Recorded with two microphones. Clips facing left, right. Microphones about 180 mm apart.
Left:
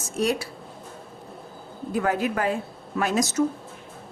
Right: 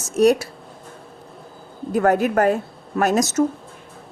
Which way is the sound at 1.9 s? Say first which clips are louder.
Right 7 dB; 50° right (ahead or behind).